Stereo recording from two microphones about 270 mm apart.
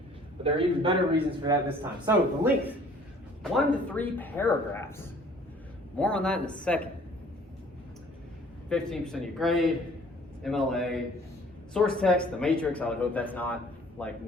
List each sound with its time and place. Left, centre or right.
0.4 s a man's voice: centre
1.8 s speech: centre
3.5 s speech: centre
6.0 s speech: centre
8.7 s speech: centre